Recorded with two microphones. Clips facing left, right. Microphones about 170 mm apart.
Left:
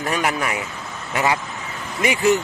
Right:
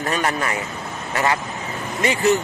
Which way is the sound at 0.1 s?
10° left (ahead or behind).